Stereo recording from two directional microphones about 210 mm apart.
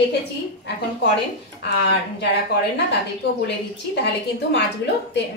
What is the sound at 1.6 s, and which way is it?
A woman's voice, 50° left (ahead or behind).